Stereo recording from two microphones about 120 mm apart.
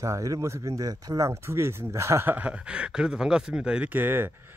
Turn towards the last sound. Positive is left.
turn(degrees=-15)  # may be behind; listen again after turning